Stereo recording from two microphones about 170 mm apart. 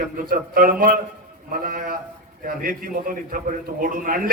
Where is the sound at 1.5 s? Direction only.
60° right (ahead or behind).